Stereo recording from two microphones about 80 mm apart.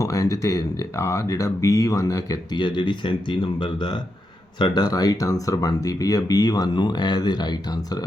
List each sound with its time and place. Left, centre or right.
0.0 s speech: left
2.6 s speech: left
4.6 s speech: left